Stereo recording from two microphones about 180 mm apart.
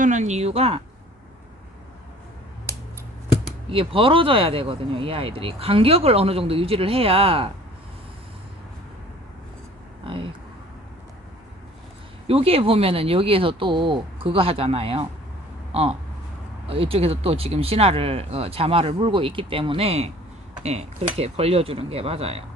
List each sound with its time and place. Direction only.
0.0 s speech: 40° right (ahead or behind)
3.7 s speech: 30° right (ahead or behind)
10.1 s vehicle: 30° right (ahead or behind)
12.3 s speech: 30° right (ahead or behind)